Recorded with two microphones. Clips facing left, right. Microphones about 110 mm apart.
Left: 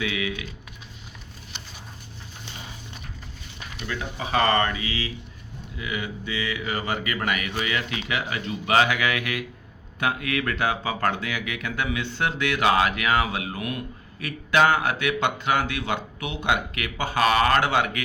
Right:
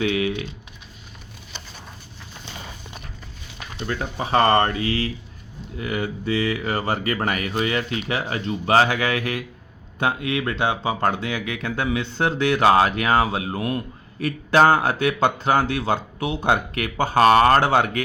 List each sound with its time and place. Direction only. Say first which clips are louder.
0.2 s speech: right 6 dB; 40° right (ahead or behind)
3.8 s speech: right 5 dB; 35° right (ahead or behind)